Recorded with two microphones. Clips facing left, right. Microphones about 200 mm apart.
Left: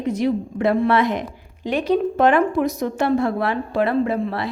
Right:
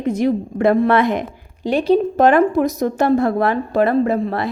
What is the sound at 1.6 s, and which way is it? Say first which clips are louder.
A woman's voice: right 4 dB; 35° right (ahead or behind).